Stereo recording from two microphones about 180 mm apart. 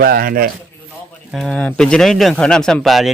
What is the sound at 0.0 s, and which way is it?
Speech, 55° right (ahead or behind).